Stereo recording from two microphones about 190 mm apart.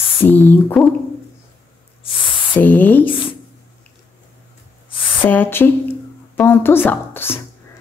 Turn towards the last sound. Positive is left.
turn(degrees=10)  # may be behind; listen again after turning